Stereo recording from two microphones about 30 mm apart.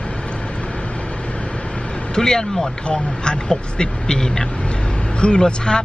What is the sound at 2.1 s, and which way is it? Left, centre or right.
Speech, left.